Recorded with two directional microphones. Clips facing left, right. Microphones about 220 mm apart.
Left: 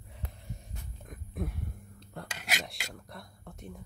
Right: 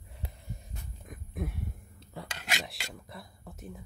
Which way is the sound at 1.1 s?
Centre (ahead or behind).